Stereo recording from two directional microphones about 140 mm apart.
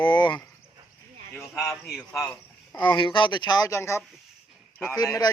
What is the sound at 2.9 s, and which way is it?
A man's voice, 35° left (ahead or behind).